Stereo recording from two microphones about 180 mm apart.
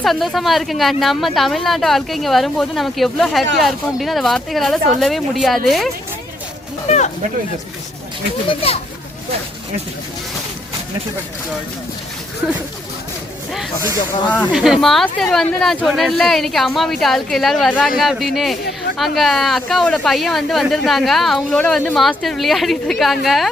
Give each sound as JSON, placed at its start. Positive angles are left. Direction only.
{"t": 0.0, "sound": "speech", "side_deg": 0}
{"t": 6.8, "sound": "speech", "side_deg": 40}
{"t": 8.4, "sound": "a child's voice", "side_deg": 35}
{"t": 14.4, "sound": "speech", "side_deg": 0}